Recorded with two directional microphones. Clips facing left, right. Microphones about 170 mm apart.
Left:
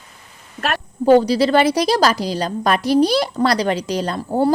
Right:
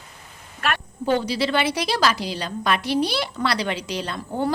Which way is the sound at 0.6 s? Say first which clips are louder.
Left 6 dB; 40° left (ahead or behind).